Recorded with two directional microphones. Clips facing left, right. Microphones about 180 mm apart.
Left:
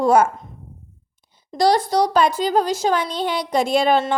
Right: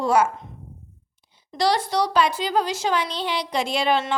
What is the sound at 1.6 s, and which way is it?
Speech, 40° left (ahead or behind).